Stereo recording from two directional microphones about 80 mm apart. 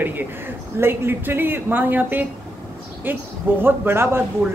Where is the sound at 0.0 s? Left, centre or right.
Right.